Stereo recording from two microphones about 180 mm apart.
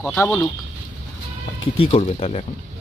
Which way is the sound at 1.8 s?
35° left (ahead or behind).